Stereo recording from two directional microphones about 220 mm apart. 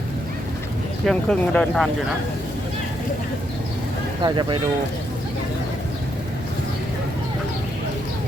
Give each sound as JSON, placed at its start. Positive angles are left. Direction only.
{"t": 1.0, "sound": "speech", "side_deg": 5}
{"t": 4.2, "sound": "speech", "side_deg": -20}